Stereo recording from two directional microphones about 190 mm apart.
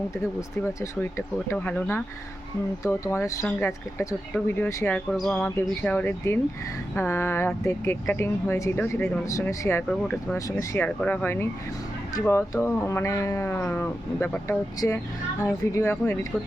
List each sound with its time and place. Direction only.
0.8 s speech: 15° left (ahead or behind)